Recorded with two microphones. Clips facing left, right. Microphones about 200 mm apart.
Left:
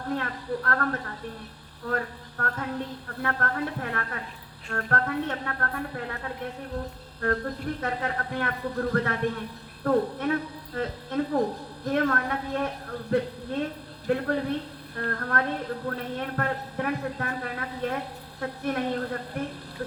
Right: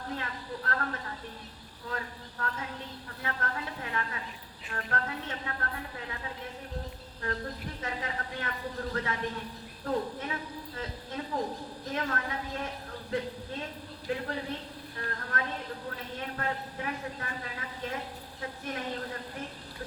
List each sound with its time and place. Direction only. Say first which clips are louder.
0.2 s speech: left 7 dB; 60° left (ahead or behind)